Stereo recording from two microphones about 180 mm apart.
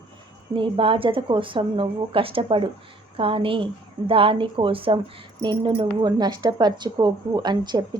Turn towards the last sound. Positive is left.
turn(degrees=-25)  # may be behind; listen again after turning